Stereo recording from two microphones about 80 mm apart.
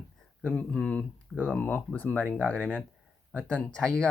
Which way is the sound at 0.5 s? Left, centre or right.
Centre.